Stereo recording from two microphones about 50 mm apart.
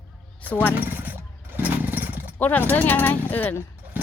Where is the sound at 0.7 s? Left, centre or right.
Right.